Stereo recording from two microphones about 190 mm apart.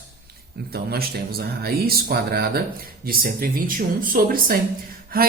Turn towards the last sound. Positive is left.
turn(degrees=-50)  # may be behind; listen again after turning